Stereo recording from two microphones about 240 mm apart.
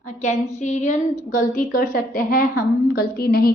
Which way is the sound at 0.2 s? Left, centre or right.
Left.